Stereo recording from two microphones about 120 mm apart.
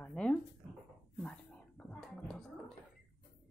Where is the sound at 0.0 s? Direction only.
10° left (ahead or behind).